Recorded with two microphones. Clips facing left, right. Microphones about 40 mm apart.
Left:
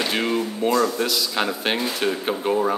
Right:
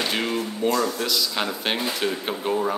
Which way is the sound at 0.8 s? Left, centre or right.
Centre.